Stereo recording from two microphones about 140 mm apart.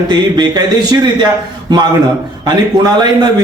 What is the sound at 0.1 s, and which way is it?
A man's voice, 30° right (ahead or behind).